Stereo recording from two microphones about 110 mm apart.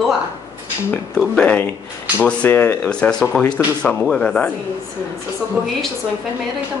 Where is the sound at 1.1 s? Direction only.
10° left (ahead or behind).